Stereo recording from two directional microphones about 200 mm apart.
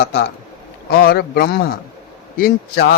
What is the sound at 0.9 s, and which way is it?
A man's voice, 50° left (ahead or behind).